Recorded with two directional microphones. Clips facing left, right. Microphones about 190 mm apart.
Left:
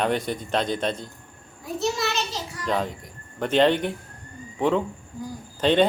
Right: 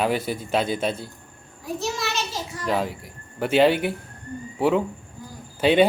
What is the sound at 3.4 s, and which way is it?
Speech, 10° right (ahead or behind).